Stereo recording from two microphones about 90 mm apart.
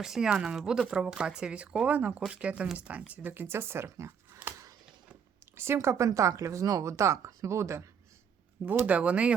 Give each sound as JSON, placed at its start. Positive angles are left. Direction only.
{"t": 0.0, "sound": "speech", "side_deg": -5}
{"t": 5.5, "sound": "speech", "side_deg": -30}
{"t": 8.6, "sound": "speech", "side_deg": -20}